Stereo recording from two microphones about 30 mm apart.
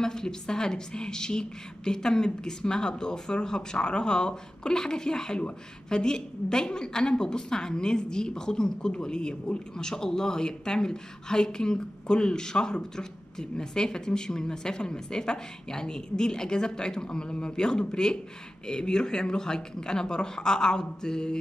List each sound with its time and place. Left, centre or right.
0.0 s speech: left